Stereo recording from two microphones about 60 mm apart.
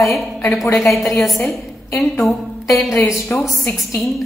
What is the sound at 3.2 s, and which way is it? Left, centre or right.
Speech, left.